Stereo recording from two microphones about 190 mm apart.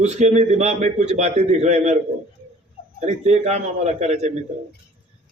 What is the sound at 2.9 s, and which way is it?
A man's voice, 35° right (ahead or behind).